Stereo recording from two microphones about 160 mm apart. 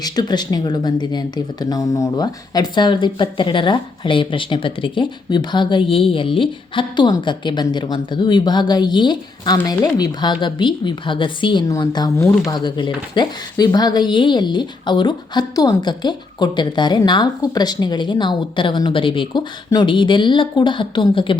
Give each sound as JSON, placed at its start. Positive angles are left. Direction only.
{"t": 0.0, "sound": "speech", "side_deg": 25}